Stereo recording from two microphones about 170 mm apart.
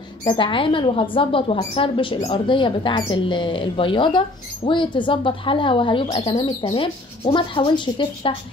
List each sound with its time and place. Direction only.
0.2 s speech: 30° left (ahead or behind)